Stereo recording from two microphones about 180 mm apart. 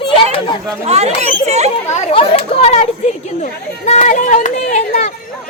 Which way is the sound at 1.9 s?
35° left (ahead or behind).